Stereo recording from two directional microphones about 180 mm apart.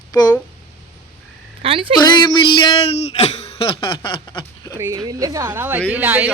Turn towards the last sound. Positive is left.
turn(degrees=-10)  # may be behind; listen again after turning